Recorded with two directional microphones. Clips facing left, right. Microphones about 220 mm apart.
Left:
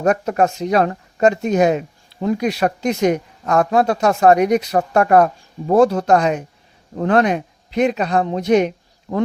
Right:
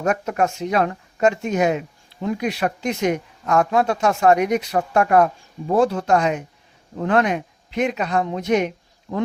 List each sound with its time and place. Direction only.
0.0 s speech: 35° left (ahead or behind)